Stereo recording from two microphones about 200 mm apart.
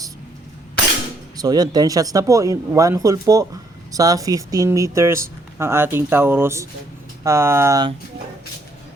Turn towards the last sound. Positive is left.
turn(degrees=-15)  # may be behind; listen again after turning